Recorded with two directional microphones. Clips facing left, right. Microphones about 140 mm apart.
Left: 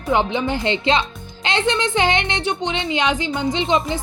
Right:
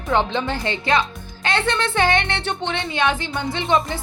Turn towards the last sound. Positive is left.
turn(degrees=20)  # may be behind; listen again after turning